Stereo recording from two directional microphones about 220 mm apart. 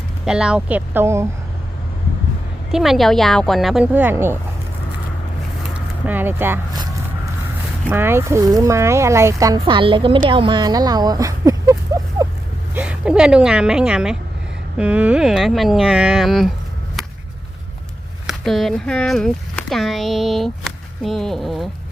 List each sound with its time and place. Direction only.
0.3 s speech: 5° right (ahead or behind)
2.7 s speech: centre (ahead or behind)
5.7 s a sound: 10° right (ahead or behind)
7.9 s speech: 10° right (ahead or behind)
12.2 s a sound: 15° right (ahead or behind)
12.7 s speech: 5° right (ahead or behind)
18.3 s speech: centre (ahead or behind)